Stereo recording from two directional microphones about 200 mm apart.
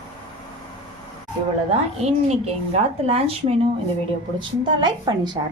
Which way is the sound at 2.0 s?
30° right (ahead or behind).